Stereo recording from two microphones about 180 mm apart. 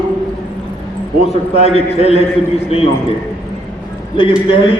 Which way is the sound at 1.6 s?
35° left (ahead or behind).